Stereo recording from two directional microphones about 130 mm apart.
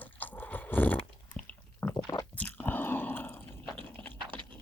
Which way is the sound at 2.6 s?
15° left (ahead or behind).